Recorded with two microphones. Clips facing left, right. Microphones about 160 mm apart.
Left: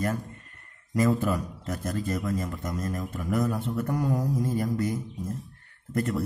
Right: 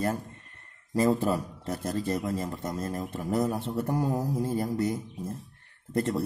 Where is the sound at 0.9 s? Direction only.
30° right (ahead or behind).